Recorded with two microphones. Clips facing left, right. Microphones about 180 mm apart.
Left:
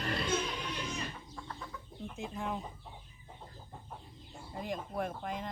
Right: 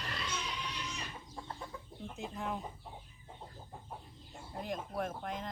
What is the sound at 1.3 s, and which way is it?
Chicken, 25° right (ahead or behind).